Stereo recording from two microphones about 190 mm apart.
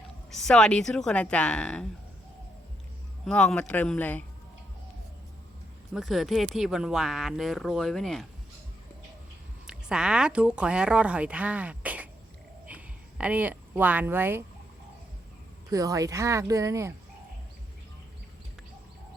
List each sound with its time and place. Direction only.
0.3 s speech: 5° left (ahead or behind)
3.2 s speech: 5° left (ahead or behind)
5.9 s speech: centre (ahead or behind)
9.6 s speech: 5° right (ahead or behind)
12.6 s a sound: 5° right (ahead or behind)
15.7 s speech: 20° right (ahead or behind)